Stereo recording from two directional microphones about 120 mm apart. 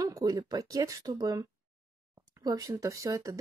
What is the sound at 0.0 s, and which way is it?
Speech, 30° right (ahead or behind).